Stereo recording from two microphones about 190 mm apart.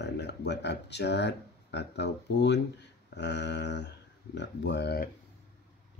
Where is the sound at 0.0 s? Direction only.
65° left (ahead or behind).